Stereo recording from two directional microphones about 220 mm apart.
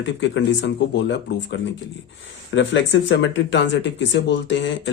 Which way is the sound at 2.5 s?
55° left (ahead or behind).